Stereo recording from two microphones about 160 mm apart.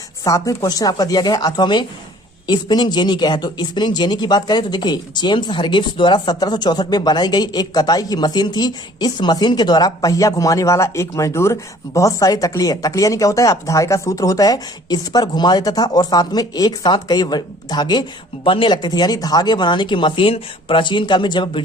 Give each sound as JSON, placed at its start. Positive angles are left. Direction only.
{"t": 0.3, "sound": "speech", "side_deg": 20}